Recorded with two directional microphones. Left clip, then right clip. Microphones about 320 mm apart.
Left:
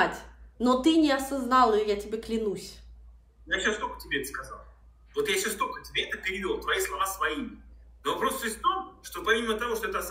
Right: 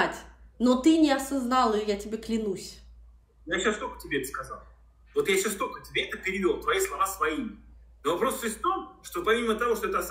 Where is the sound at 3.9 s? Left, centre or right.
Centre.